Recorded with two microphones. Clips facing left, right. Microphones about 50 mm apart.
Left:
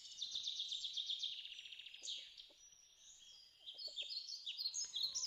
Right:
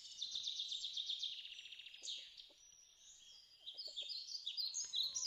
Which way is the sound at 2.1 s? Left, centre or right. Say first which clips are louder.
Even; left.